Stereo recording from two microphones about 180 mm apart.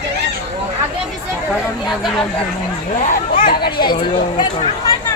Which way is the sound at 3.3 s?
55° left (ahead or behind).